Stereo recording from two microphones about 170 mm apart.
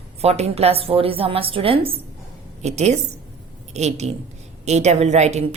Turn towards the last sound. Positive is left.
turn(degrees=-40)  # may be behind; listen again after turning